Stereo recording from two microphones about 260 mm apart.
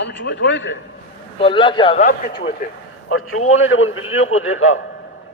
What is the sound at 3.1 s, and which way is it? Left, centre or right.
A man's voice, left.